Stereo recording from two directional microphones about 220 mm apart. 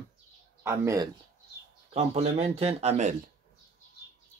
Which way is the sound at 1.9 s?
30° right (ahead or behind).